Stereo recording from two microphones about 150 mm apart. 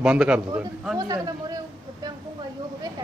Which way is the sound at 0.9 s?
25° right (ahead or behind).